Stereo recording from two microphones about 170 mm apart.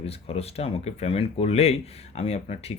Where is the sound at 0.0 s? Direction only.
35° left (ahead or behind).